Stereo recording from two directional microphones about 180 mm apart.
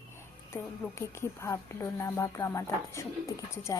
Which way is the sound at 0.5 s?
15° left (ahead or behind).